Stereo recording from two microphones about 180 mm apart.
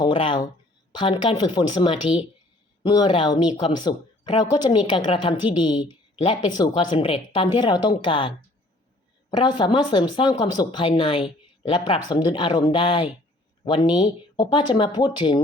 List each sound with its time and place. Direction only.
0.0 s a woman's voice: 30° left (ahead or behind)